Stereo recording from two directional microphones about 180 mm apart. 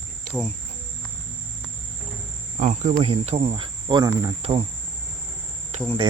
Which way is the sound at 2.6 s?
45° right (ahead or behind).